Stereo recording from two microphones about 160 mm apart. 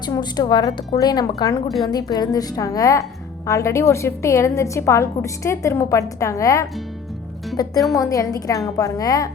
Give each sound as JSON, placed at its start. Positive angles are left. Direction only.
{"t": 0.0, "sound": "a woman's voice", "side_deg": 25}